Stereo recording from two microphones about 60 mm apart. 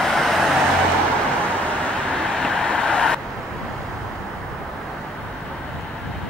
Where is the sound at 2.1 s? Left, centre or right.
Centre.